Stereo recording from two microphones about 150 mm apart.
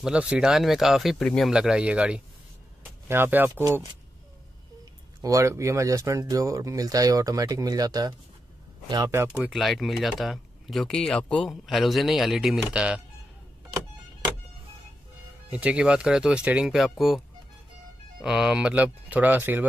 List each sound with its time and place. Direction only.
0.0 s speech: 5° right (ahead or behind)
5.2 s speech: 20° right (ahead or behind)
9.3 s speech: 5° right (ahead or behind)
15.5 s speech: 10° right (ahead or behind)
18.2 s speech: 5° right (ahead or behind)